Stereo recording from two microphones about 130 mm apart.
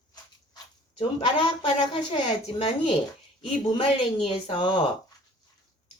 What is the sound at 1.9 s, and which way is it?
Speech, 45° left (ahead or behind).